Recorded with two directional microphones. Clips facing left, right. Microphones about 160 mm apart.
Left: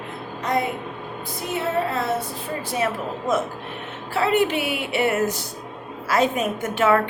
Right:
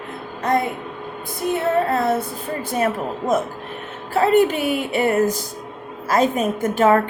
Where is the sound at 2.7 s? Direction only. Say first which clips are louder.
Right 4 dB; 45° right (ahead or behind).